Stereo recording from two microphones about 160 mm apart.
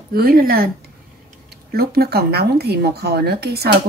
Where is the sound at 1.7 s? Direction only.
75° right (ahead or behind).